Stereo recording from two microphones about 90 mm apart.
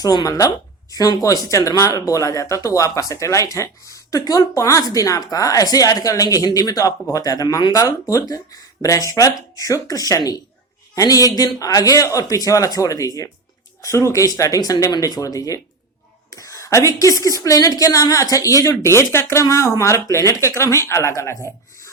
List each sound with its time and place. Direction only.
0.0 s speech: 50° left (ahead or behind); by 21.3 s 35° left (ahead or behind)